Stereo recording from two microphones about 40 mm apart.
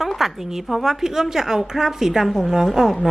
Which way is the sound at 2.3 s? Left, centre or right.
Centre.